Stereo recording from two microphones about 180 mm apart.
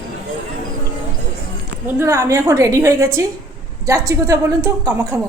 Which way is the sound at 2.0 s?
15° right (ahead or behind).